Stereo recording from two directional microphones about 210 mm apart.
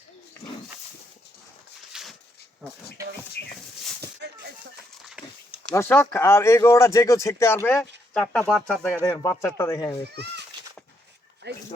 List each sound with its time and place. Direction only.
1.9 s a sound: centre (ahead or behind)
5.7 s speech: 10° left (ahead or behind)
11.4 s speech: 50° right (ahead or behind)